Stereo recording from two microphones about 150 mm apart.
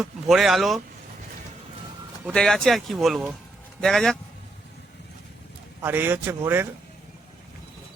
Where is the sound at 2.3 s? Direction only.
Centre (ahead or behind).